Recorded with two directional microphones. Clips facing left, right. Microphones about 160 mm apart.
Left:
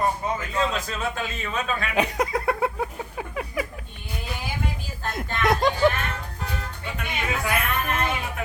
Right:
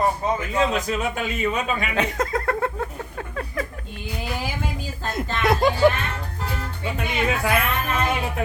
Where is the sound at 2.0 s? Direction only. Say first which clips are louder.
Left 2 dB; 10° left (ahead or behind).